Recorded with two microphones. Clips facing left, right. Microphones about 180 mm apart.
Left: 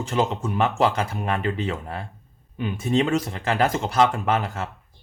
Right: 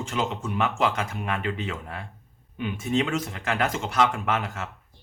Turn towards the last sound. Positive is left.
turn(degrees=35)  # may be behind; listen again after turning